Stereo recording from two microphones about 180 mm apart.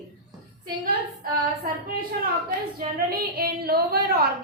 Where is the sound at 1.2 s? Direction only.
55° right (ahead or behind).